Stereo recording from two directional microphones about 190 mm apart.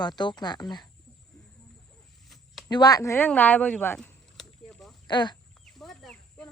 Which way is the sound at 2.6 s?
20° left (ahead or behind).